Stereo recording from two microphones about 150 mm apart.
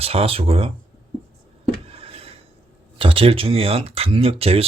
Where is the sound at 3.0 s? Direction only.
35° right (ahead or behind).